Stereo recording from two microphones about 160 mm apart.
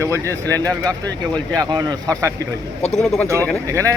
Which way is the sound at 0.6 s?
5° left (ahead or behind).